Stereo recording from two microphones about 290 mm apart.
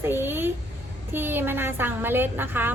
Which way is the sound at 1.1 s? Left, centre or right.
Centre.